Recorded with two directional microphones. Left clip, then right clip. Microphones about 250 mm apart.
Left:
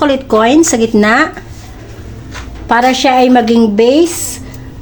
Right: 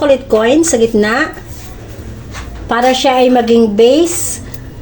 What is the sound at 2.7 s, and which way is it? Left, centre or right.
A woman's voice, left.